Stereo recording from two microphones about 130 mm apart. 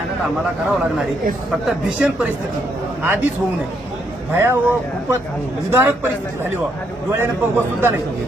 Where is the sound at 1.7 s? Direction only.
5° right (ahead or behind).